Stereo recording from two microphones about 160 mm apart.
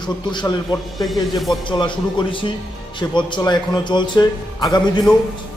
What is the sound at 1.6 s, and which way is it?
Speech, 30° left (ahead or behind).